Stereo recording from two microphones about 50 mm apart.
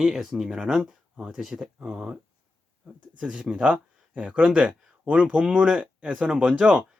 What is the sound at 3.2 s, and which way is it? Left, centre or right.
Speech, right.